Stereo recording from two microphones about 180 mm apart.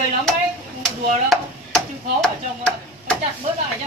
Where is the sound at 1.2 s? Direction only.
Centre (ahead or behind).